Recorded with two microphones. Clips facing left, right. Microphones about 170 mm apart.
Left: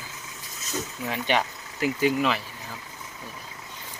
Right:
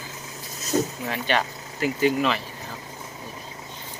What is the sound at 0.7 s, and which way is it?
Speech, 45° right (ahead or behind).